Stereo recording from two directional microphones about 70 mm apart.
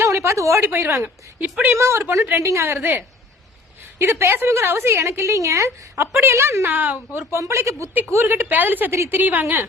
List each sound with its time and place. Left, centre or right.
0.0 s a woman's voice: right
0.7 s a woman's voice: right
1.7 s a woman's voice: right
6.7 s a woman's voice: right
7.3 s a woman's voice: right
8.1 s a woman's voice: right